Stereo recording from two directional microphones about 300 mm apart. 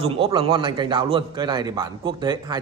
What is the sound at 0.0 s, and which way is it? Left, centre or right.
A man's voice, centre.